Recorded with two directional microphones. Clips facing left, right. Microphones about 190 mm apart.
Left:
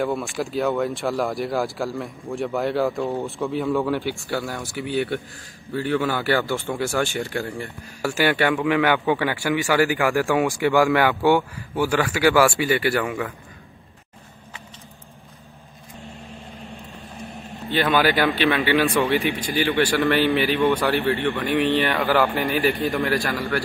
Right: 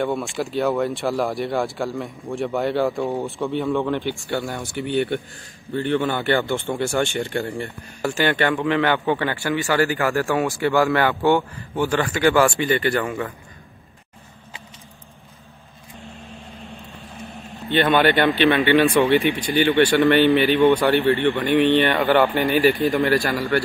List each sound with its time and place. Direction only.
0.0 s a man's voice: centre (ahead or behind)
17.2 s a man's voice: centre (ahead or behind)